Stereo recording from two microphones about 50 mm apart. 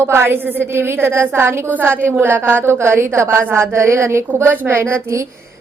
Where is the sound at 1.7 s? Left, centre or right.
Right.